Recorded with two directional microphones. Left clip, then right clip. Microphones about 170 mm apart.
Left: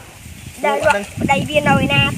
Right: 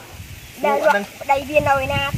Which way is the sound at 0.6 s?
15° left (ahead or behind).